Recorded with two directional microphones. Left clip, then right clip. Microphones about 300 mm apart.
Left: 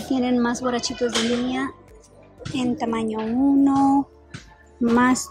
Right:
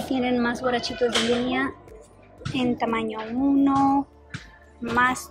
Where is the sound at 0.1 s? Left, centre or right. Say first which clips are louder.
Left 2 dB; centre.